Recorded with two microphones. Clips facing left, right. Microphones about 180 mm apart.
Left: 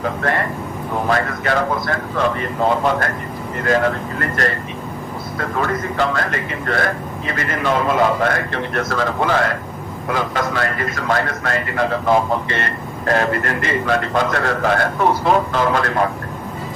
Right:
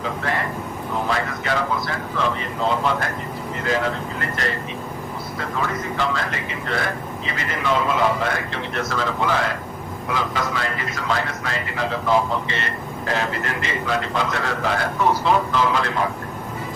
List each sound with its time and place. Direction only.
0.0 s a man's voice: 55° left (ahead or behind)